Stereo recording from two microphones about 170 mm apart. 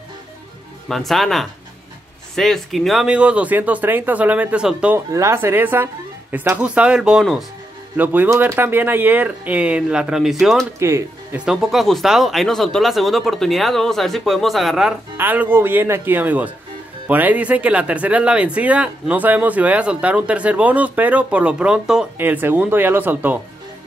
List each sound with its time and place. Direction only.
0.8 s speech: centre (ahead or behind)
10.8 s speech: 15° right (ahead or behind)
11.4 s speech: centre (ahead or behind)